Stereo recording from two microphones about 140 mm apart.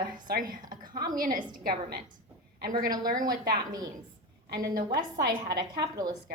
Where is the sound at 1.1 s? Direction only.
80° right.